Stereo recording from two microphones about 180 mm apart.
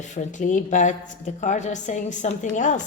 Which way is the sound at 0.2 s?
45° left (ahead or behind).